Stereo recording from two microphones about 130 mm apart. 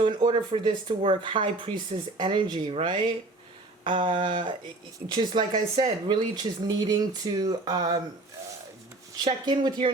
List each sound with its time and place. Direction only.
0.0 s speech: 40° right (ahead or behind)
9.2 s speech: 35° right (ahead or behind)